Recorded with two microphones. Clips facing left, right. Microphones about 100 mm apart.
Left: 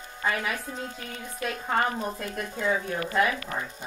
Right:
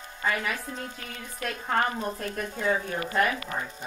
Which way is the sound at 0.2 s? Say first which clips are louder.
Even; 5° left (ahead or behind).